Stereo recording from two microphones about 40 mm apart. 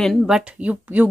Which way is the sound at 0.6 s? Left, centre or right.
Right.